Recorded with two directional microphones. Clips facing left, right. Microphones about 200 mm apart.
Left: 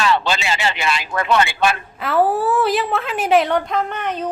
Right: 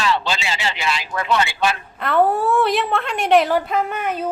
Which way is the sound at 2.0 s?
Centre (ahead or behind).